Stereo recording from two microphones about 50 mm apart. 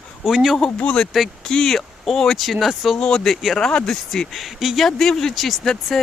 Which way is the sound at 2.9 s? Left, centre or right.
Centre.